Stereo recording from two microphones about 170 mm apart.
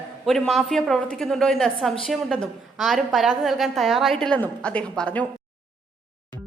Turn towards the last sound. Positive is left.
turn(degrees=5)  # may be behind; listen again after turning